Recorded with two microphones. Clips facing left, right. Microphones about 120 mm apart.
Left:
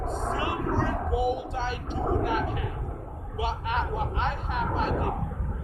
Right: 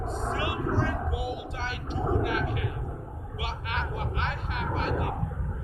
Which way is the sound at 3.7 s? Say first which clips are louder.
Left 4 dB; 40° left (ahead or behind).